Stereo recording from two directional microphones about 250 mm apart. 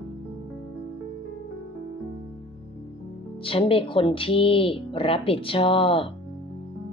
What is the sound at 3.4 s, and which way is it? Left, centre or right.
Speech, left.